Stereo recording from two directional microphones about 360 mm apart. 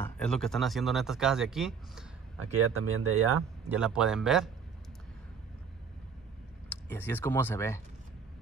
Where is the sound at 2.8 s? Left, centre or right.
Right.